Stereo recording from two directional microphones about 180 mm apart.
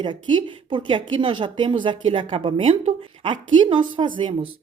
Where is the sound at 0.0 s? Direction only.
25° right (ahead or behind).